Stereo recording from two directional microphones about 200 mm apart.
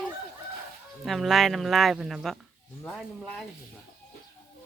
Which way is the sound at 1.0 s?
Centre (ahead or behind).